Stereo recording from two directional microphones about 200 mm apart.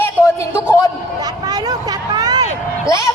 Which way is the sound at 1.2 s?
20° right (ahead or behind).